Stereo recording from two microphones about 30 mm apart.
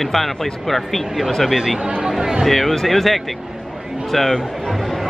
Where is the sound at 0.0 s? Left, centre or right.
Centre.